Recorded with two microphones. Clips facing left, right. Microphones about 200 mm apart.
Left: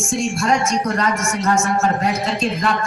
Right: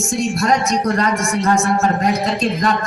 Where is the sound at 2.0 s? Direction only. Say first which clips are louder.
Right 3 dB; centre (ahead or behind).